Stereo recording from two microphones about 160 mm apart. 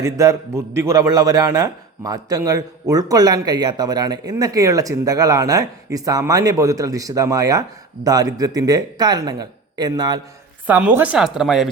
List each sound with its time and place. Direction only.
0.0 s a man's voice: 20° right (ahead or behind)
10.7 s a woman's voice: 10° right (ahead or behind)